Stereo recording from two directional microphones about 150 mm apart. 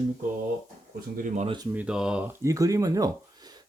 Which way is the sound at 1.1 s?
55° right (ahead or behind).